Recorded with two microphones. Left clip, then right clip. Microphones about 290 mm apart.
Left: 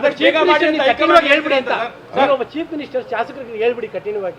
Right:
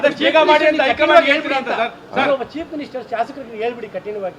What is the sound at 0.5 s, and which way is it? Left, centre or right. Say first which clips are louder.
Speech: right 1 dB; right.